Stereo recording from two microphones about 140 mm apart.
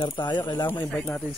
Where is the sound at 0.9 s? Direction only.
5° left (ahead or behind).